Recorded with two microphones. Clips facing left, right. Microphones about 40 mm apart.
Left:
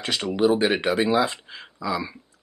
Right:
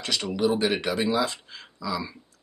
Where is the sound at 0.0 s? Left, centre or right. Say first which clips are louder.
Left 4 dB; left.